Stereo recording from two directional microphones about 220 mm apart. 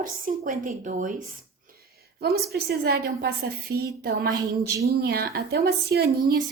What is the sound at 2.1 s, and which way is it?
A woman's voice, 45° right (ahead or behind).